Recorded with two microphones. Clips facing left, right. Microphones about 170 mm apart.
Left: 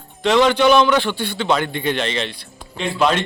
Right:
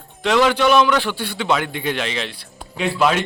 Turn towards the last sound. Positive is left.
turn(degrees=-5)  # may be behind; listen again after turning